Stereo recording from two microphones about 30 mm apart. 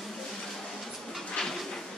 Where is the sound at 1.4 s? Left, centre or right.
Left.